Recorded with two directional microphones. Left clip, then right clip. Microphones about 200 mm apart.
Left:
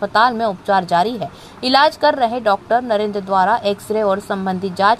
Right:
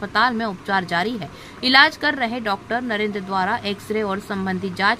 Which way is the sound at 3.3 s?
15° left (ahead or behind).